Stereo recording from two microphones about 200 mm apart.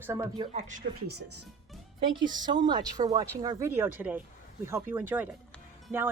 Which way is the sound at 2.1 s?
20° right (ahead or behind).